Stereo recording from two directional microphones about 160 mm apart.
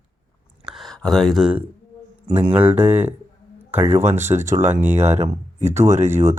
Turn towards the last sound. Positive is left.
turn(degrees=-15)  # may be behind; listen again after turning